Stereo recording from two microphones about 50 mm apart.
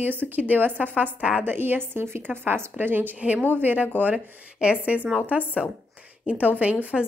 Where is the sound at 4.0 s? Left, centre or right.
Right.